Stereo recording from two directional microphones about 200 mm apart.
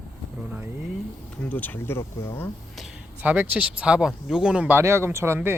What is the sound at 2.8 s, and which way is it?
Speech, 5° right (ahead or behind).